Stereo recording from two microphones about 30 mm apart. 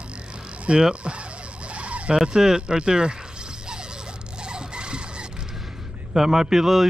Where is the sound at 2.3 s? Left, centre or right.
Right.